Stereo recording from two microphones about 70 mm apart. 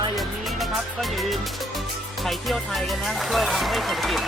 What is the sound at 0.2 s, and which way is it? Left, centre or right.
Music, centre.